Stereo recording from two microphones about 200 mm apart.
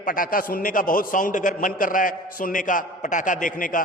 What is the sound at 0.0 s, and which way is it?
A man's voice, 45° left (ahead or behind).